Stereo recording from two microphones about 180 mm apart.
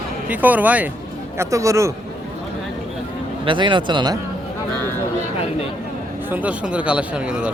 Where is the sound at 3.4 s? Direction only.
25° right (ahead or behind).